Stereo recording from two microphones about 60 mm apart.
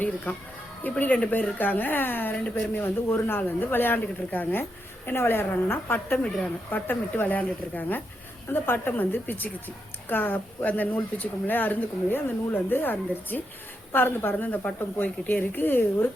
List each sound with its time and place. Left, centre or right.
0.3 s a woman's voice: left